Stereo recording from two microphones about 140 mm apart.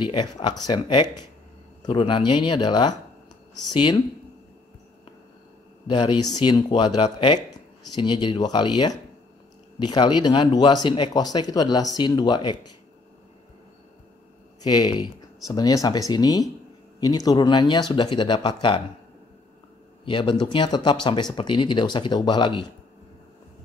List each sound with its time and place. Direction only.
0.0 s speech: 30° left (ahead or behind)
5.9 s speech: 35° left (ahead or behind)
14.6 s speech: 30° left (ahead or behind)
20.1 s speech: 35° left (ahead or behind)